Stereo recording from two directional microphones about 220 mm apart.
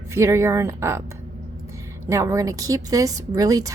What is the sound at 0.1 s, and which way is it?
Speech, 10° right (ahead or behind).